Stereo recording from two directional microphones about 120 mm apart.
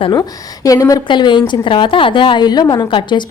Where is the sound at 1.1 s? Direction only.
40° left (ahead or behind).